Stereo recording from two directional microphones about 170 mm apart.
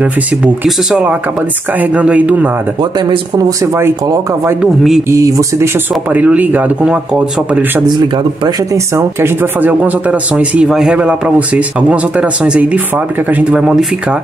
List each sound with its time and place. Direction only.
0.0 s speech: 5° right (ahead or behind)
2.8 s speech: 25° right (ahead or behind); by 13.8 s 5° right (ahead or behind)